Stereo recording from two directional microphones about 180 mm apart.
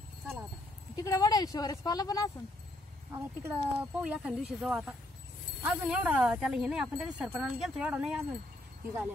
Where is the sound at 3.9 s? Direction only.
5° right (ahead or behind).